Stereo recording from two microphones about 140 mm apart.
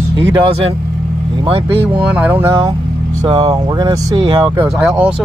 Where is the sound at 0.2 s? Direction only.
35° right (ahead or behind).